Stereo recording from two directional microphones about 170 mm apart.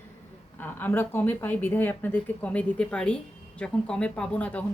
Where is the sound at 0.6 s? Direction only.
10° left (ahead or behind).